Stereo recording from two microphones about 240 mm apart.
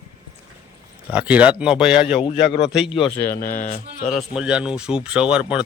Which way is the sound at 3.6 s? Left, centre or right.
Left.